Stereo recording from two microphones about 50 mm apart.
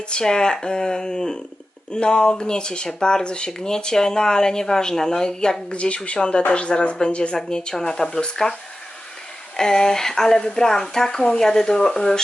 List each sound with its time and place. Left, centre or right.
0.1 s speech: centre
9.6 s speech: centre